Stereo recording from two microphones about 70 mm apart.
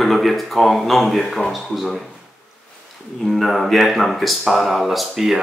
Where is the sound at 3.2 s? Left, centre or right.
Centre.